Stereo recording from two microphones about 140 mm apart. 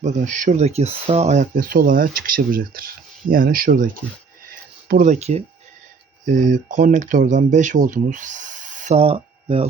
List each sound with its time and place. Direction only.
0.0 s speech: 65° right (ahead or behind); by 3.8 s 85° right
4.9 s speech: 80° right
6.2 s speech: 65° right (ahead or behind); by 9.6 s 45° right (ahead or behind)